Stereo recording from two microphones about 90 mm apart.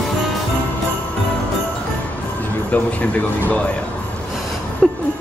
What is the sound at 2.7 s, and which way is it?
Speech, 15° left (ahead or behind).